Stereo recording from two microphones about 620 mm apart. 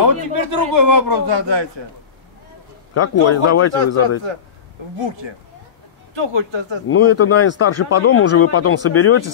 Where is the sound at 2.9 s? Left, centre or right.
Left.